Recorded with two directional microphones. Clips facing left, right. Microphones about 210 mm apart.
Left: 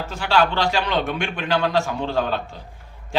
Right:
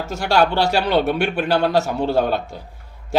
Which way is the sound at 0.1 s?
45° right (ahead or behind).